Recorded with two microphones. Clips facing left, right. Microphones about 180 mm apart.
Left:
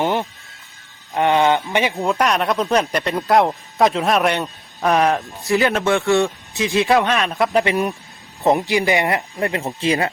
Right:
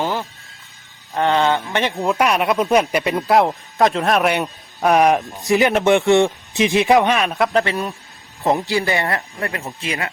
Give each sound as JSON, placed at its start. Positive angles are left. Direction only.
{"t": 0.0, "sound": "music", "side_deg": 20}
{"t": 1.1, "sound": "speech", "side_deg": 15}
{"t": 1.9, "sound": "speech", "side_deg": 0}
{"t": 4.4, "sound": "speech", "side_deg": -15}
{"t": 7.3, "sound": "speech", "side_deg": 0}
{"t": 7.5, "sound": "speech", "side_deg": 15}